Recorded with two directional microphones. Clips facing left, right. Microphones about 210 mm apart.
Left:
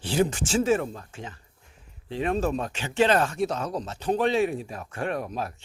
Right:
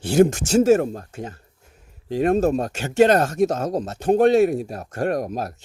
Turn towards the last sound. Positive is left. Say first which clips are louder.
# right 6 dB
turn(degrees=-40)  # may be behind; listen again after turning